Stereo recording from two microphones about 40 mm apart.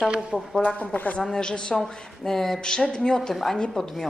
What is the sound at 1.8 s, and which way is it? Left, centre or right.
A woman's voice, centre.